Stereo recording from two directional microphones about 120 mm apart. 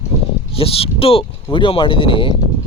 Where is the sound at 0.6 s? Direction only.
55° left (ahead or behind).